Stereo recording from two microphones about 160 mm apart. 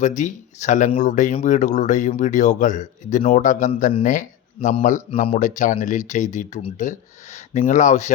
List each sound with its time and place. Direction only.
0.0 s speech: 50° left (ahead or behind)